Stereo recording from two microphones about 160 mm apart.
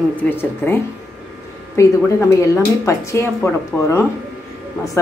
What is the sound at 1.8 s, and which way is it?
A woman's voice, 15° left (ahead or behind).